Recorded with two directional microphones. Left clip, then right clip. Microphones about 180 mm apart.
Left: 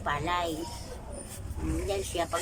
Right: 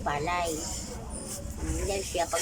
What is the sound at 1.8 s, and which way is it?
Speech, 5° right (ahead or behind).